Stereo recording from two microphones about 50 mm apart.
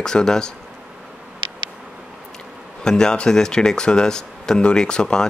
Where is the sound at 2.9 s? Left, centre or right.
Centre.